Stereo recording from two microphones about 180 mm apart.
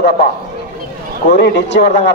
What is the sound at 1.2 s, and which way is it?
Speech, 45° left (ahead or behind).